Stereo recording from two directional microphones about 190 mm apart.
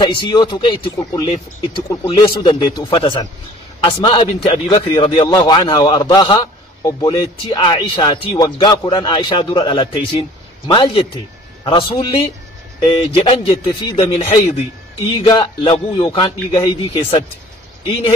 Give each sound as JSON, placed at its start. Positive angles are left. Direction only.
{"t": 0.0, "sound": "a man's voice", "side_deg": 25}